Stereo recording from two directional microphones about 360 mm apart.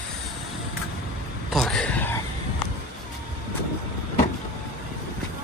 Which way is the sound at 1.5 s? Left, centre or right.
Centre.